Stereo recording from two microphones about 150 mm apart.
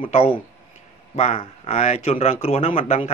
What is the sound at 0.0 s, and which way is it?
Speech, 40° left (ahead or behind).